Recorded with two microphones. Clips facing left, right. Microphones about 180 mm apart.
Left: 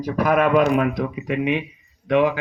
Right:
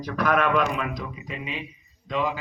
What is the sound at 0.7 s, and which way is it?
Speech, 60° left (ahead or behind).